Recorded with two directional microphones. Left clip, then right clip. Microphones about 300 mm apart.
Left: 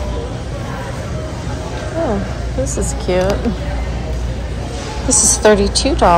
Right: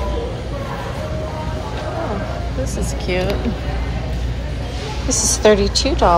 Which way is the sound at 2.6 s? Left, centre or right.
Left.